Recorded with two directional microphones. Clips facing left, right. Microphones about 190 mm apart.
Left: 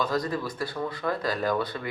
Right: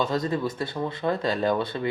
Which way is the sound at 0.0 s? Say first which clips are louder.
Right 2 dB; 25° right (ahead or behind).